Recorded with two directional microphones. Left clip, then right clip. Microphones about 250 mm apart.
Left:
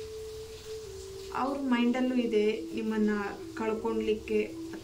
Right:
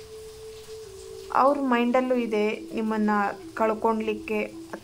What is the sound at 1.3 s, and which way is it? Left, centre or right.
A woman's voice, centre.